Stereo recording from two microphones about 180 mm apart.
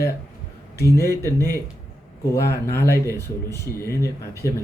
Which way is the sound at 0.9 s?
15° left (ahead or behind).